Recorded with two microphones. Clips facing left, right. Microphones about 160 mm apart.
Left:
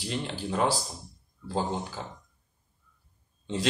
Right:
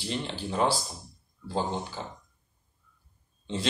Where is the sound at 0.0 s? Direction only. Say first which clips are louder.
Even; 10° left (ahead or behind).